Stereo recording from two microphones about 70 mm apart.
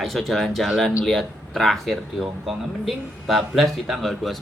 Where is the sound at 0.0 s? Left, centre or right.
Centre.